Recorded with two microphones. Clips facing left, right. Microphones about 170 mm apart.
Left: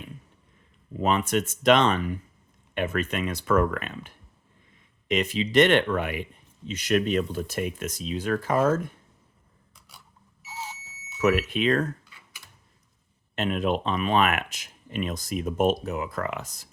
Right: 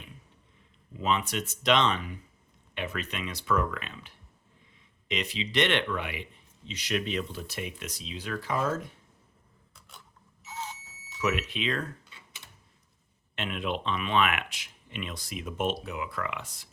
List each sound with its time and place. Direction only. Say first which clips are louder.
0.9 s speech: left 5 dB; 50° left (ahead or behind)
10.4 s smoke detector: left 1 dB; 10° left (ahead or behind)
11.2 s speech: left 7 dB; 50° left (ahead or behind)
12.0 s typing: even; 25° right (ahead or behind)
13.3 s speech: left 7 dB; 40° left (ahead or behind)